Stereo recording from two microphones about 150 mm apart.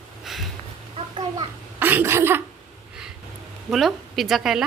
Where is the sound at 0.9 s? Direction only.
35° right (ahead or behind).